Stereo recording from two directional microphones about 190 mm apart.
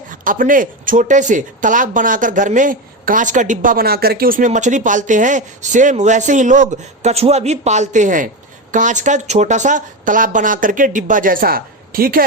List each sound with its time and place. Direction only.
0.1 s speech: 45° right (ahead or behind)